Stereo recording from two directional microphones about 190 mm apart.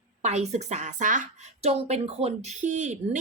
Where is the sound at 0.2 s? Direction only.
35° right (ahead or behind).